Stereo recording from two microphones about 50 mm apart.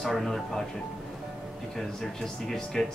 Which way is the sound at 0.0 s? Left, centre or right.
Centre.